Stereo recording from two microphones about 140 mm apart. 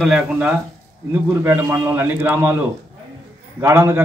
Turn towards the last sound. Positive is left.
turn(degrees=-20)  # may be behind; listen again after turning